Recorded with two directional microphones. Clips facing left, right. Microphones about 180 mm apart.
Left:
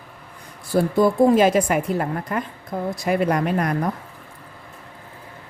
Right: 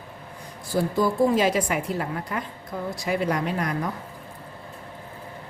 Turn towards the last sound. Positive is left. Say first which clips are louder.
# left 5 dB
turn(degrees=55)  # may be behind; listen again after turning